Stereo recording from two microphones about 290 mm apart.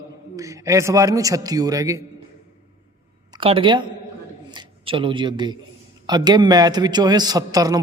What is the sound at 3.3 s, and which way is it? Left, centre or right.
A man's voice, centre.